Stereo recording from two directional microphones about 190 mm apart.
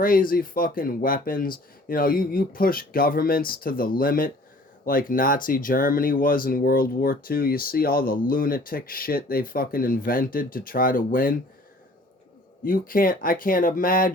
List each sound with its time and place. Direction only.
0.0 s speech: 50° left (ahead or behind)
12.6 s speech: 45° left (ahead or behind)